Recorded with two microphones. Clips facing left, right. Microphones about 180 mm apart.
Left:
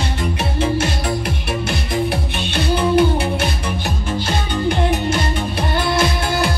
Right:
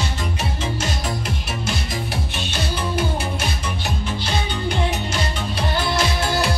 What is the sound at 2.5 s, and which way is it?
Music, 60° left (ahead or behind).